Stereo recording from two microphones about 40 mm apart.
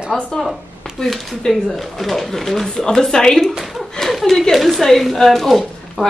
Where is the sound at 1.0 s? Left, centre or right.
Centre.